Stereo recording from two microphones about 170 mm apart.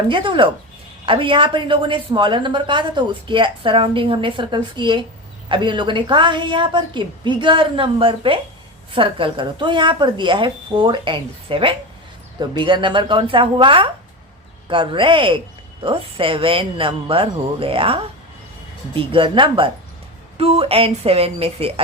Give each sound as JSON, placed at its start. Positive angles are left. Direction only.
{"t": 0.1, "sound": "a woman's voice", "side_deg": -30}